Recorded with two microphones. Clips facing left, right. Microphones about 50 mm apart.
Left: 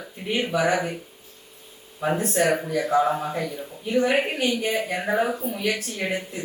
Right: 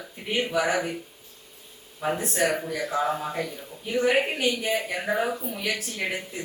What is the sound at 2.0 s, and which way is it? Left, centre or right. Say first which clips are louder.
A man's voice: left 3 dB; centre.